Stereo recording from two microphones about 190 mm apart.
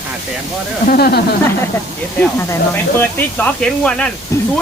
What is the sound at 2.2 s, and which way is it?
Speech, 10° left (ahead or behind).